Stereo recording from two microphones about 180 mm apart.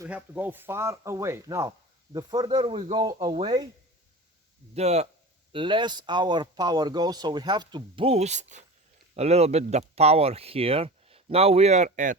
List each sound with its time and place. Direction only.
0.0 s speech: 10° right (ahead or behind)
4.7 s speech: 35° right (ahead or behind)